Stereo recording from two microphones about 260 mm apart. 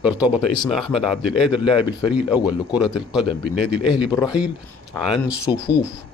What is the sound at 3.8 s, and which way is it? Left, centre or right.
Speech, centre.